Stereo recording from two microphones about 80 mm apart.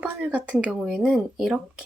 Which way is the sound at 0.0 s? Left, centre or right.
Centre.